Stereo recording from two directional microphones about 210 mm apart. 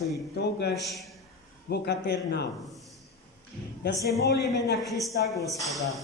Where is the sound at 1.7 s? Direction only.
50° left (ahead or behind).